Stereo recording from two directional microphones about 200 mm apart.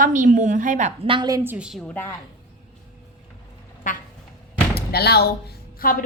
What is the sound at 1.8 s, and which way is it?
Speech, 10° left (ahead or behind).